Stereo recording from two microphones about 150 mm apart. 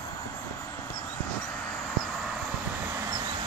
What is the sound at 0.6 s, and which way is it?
Vehicle, 15° left (ahead or behind).